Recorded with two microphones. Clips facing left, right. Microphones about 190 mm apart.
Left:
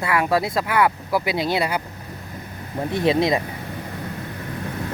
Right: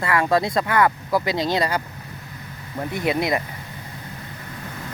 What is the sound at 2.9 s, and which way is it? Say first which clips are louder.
Speech: left 3 dB; 25° left (ahead or behind).